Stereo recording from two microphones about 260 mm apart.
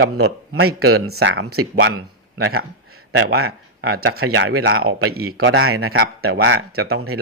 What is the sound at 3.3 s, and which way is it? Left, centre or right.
Speech, right.